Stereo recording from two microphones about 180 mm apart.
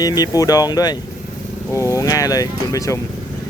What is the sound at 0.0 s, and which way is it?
Speech, 20° left (ahead or behind).